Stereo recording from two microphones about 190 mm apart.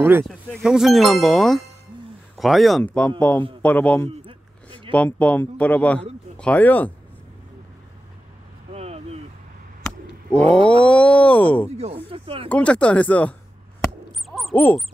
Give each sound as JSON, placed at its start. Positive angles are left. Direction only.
{"t": 0.2, "sound": "a man's voice", "side_deg": 0}
{"t": 8.7, "sound": "vehicle", "side_deg": -35}
{"t": 10.4, "sound": "groan", "side_deg": 5}
{"t": 11.7, "sound": "speech", "side_deg": -35}
{"t": 12.4, "sound": "a man's voice", "side_deg": 5}
{"t": 14.3, "sound": "owl", "side_deg": 0}